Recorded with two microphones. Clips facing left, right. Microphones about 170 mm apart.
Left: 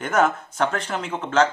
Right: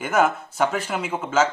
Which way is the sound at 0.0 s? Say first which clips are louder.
Even; 5° right (ahead or behind).